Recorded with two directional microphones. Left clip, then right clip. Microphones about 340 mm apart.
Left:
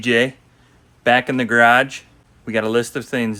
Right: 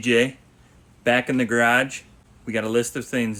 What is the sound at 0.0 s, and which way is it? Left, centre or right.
Speech, centre.